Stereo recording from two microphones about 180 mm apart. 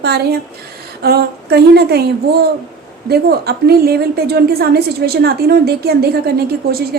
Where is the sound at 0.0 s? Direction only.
65° right (ahead or behind).